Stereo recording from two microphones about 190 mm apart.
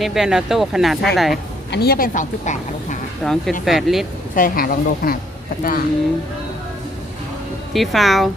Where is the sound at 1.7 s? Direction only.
55° left (ahead or behind).